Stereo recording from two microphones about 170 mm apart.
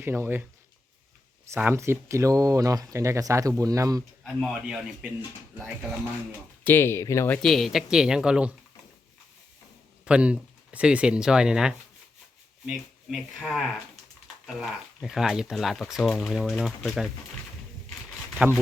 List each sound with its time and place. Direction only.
0.0 s speech: 15° right (ahead or behind)
1.5 s speech: 15° right (ahead or behind)
4.2 s speech: centre (ahead or behind)
6.7 s speech: 15° left (ahead or behind)
7.4 s speech: centre (ahead or behind)
10.1 s speech: 5° right (ahead or behind)